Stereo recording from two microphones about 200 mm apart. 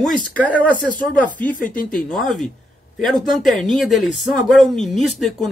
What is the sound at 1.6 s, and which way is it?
Speech, 45° left (ahead or behind).